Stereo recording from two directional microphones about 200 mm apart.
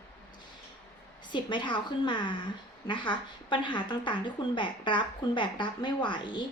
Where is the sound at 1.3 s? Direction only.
20° left (ahead or behind).